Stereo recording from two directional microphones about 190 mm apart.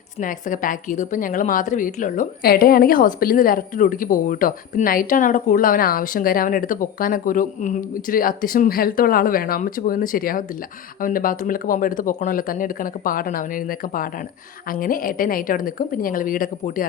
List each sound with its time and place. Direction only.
0.2 s a woman's voice: 45° left (ahead or behind)